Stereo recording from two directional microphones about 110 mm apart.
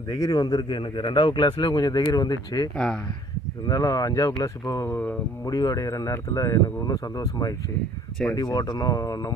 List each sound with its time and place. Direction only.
0.1 s a man's voice: 35° left (ahead or behind)